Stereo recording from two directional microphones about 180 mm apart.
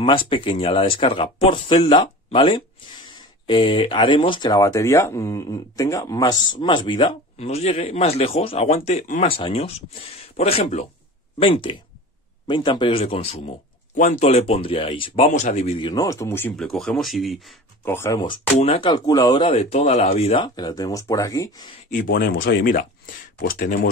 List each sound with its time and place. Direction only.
0.0 s speech: 30° left (ahead or behind)
9.2 s speech: 30° left (ahead or behind)
15.9 s speech: 20° left (ahead or behind); by 17.6 s centre (ahead or behind)
17.8 s speech: 15° left (ahead or behind)
18.6 s speech: 30° left (ahead or behind)
20.4 s speech: 25° left (ahead or behind)
21.9 s speech: 55° left (ahead or behind)